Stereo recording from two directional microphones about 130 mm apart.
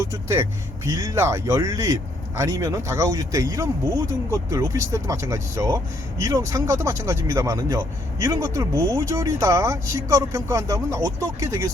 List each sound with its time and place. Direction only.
0.0 s speech: 20° right (ahead or behind)